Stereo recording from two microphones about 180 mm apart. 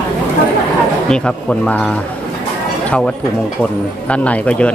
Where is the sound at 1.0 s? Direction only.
5° left (ahead or behind).